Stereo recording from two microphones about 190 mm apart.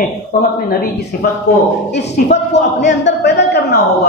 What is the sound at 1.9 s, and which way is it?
A woman's voice, 65° left (ahead or behind).